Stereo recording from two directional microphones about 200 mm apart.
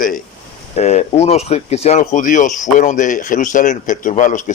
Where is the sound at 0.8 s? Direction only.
35° left (ahead or behind).